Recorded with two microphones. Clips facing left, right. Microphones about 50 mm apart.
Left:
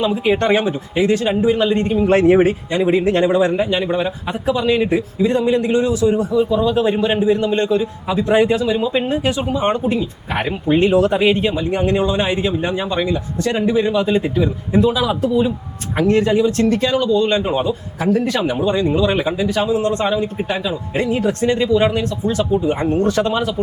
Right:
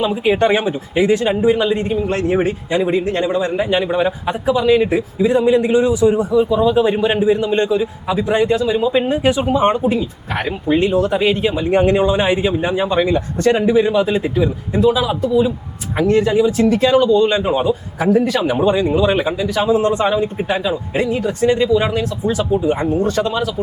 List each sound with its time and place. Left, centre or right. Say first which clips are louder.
0.0 s a man's voice: right 1 dB; centre
2.0 s speech: left 5 dB; left
3.5 s a man's voice: right 1 dB; centre
6.3 s a man's voice: right 2 dB; centre
8.3 s speech: left 2 dB; centre
8.6 s a man's voice: right 2 dB; centre
9.2 s a man's voice: right 4 dB; centre
9.6 s a man's voice: even; centre
10.3 s a man's voice: even; centre
11.7 s a man's voice: right 6 dB; right
19.4 s speech: even; centre
19.6 s a man's voice: right 6 dB; right
19.9 s a man's voice: right 2 dB; centre